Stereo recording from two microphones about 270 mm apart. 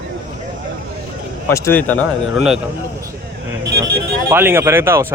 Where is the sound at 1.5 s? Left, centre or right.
Centre.